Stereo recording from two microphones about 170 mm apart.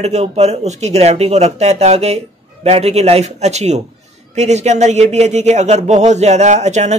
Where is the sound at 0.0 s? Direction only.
40° right (ahead or behind).